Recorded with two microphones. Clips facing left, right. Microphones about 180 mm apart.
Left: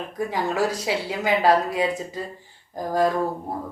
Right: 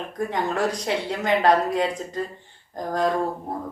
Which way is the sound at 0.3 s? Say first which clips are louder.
Left 1 dB; 5° left (ahead or behind).